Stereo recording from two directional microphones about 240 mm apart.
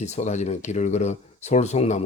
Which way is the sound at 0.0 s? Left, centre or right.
Left.